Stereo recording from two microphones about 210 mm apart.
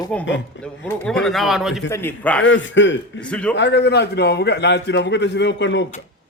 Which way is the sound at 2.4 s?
60° left (ahead or behind).